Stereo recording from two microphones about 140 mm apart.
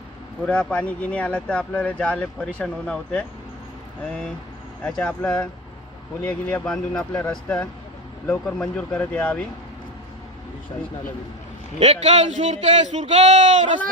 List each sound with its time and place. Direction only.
0.4 s speech: 10° left (ahead or behind)
4.8 s speech: 10° left (ahead or behind)
8.3 s speech: 10° left (ahead or behind)
11.8 s speech: 50° right (ahead or behind)